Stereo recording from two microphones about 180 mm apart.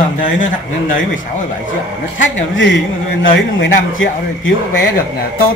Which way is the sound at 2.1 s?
90° left.